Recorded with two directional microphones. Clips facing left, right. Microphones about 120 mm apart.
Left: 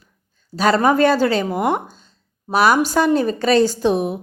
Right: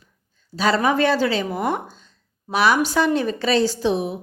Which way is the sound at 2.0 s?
40° left (ahead or behind).